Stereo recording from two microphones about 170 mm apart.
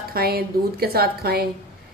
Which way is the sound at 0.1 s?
65° right (ahead or behind).